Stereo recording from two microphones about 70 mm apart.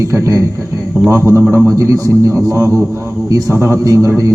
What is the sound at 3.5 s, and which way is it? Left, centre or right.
Speech, right.